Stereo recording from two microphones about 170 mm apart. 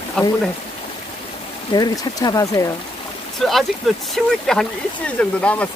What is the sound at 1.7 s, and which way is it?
Speech, 25° left (ahead or behind).